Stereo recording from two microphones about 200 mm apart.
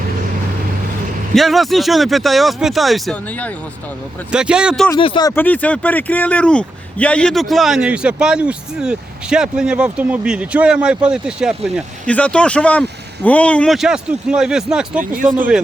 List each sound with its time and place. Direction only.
1.4 s speech: centre (ahead or behind)
4.3 s speech: 5° right (ahead or behind)
4.9 s speech: 25° left (ahead or behind)
5.3 s speech: 10° left (ahead or behind)